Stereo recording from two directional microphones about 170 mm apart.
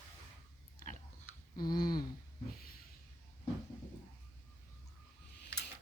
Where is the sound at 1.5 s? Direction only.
25° left (ahead or behind).